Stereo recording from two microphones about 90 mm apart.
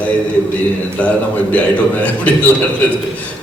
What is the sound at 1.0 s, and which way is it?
A man's voice, 15° left (ahead or behind).